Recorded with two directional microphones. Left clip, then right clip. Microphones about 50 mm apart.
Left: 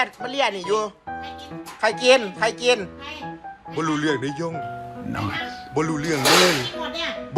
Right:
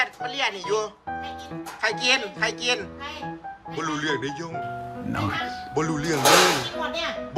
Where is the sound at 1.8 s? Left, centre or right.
Centre.